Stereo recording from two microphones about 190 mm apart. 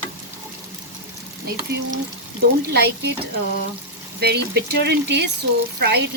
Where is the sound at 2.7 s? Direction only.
55° right (ahead or behind).